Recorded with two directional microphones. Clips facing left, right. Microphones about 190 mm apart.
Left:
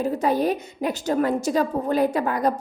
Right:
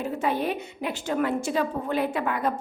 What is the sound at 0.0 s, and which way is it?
A woman's voice, 40° left (ahead or behind).